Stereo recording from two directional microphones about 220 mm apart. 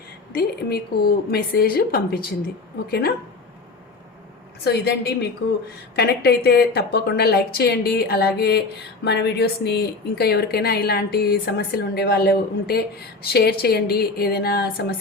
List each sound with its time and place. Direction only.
0.3 s a woman's voice: 45° left (ahead or behind)
4.6 s a woman's voice: 50° left (ahead or behind)